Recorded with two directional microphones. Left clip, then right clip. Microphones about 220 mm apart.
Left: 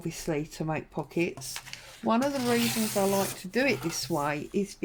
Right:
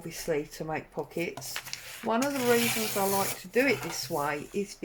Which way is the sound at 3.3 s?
50° left (ahead or behind).